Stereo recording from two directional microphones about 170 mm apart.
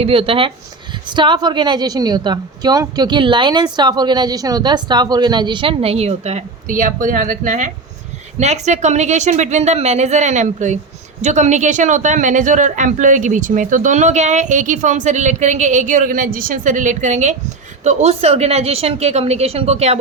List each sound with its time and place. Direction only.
0.0 s a woman's voice: 30° right (ahead or behind)